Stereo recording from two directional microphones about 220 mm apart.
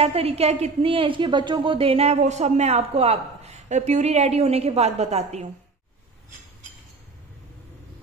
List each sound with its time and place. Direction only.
0.0 s a woman's voice: 25° right (ahead or behind)